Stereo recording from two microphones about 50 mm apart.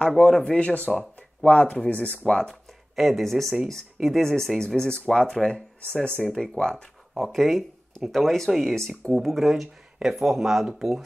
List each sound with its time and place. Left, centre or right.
0.0 s speech: centre
3.0 s speech: centre
7.2 s speech: centre